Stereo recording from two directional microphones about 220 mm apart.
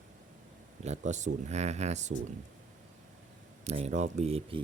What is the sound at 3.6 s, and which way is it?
Speech, 25° right (ahead or behind).